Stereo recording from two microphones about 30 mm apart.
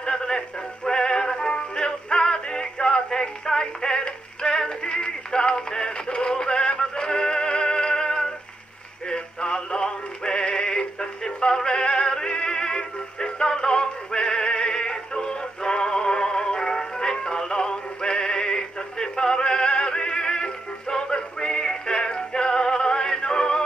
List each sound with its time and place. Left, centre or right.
0.0 s music: left
0.8 s synthetic singing: left